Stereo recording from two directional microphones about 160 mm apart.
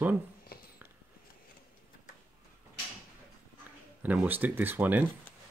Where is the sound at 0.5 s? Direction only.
70° left (ahead or behind).